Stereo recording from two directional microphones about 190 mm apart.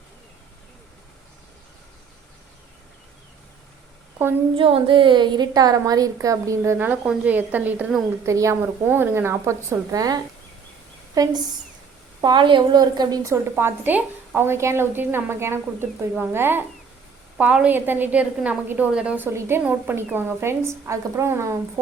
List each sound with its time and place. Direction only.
4.5 s a woman's voice: 30° right (ahead or behind); by 8.0 s 5° right (ahead or behind)
8.2 s a woman's voice: 15° right (ahead or behind)
11.2 s a woman's voice: 20° right (ahead or behind)